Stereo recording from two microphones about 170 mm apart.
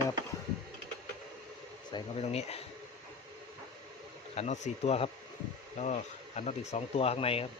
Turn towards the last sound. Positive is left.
turn(degrees=35)  # may be behind; listen again after turning